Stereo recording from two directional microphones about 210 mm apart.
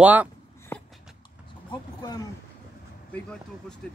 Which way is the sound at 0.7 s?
10° left (ahead or behind).